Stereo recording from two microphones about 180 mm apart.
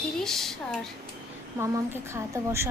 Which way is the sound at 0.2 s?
Centre (ahead or behind).